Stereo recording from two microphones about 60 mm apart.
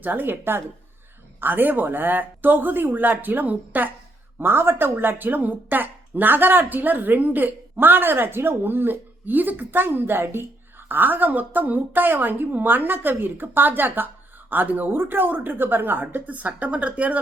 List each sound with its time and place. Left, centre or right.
0.0 s speech: right